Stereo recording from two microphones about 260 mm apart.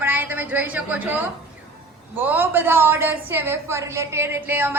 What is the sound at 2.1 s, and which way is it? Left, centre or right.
A woman's voice, centre.